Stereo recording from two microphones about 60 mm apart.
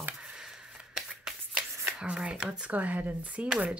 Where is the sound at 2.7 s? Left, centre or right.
Right.